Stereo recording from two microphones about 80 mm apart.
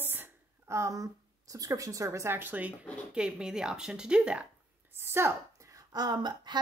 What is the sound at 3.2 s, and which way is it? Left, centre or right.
Speech, centre.